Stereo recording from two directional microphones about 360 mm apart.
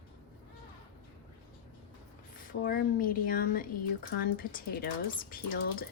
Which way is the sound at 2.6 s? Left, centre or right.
Left.